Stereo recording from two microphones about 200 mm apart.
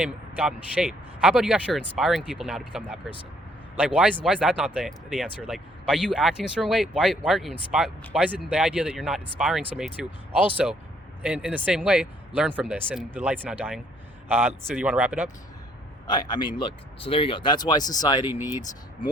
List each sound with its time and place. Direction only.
0.0 s speech: 5° right (ahead or behind)
16.0 s speech: 20° left (ahead or behind)
18.3 s speech: 10° right (ahead or behind)